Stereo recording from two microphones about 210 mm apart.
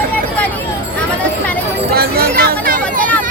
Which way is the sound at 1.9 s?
45° right (ahead or behind).